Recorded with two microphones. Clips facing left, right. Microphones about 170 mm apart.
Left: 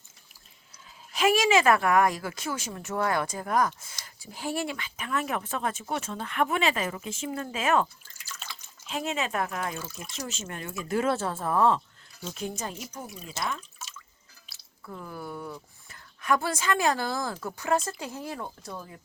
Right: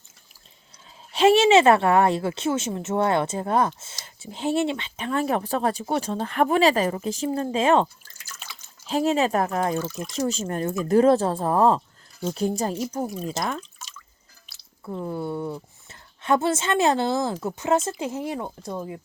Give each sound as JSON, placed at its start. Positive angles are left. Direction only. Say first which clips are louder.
{"t": 1.1, "sound": "a woman's voice", "louder": "right 7 dB", "side_deg": -30}
{"t": 8.3, "sound": "liquid", "louder": "even", "side_deg": -5}
{"t": 8.9, "sound": "speech", "louder": "right 9 dB", "side_deg": -35}
{"t": 13.7, "sound": "drip", "louder": "even", "side_deg": 5}
{"t": 14.8, "sound": "a woman's voice", "louder": "right 9 dB", "side_deg": -25}